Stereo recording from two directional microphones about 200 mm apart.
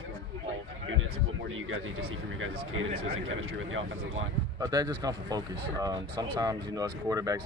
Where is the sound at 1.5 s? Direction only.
85° right.